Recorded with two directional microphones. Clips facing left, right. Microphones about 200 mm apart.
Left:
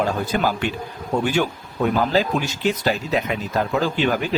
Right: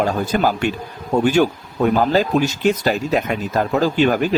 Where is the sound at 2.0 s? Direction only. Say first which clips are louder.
Right 4 dB; 45° right (ahead or behind).